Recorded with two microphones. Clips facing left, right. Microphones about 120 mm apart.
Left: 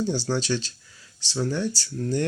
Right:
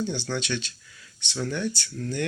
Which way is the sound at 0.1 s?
35° left (ahead or behind).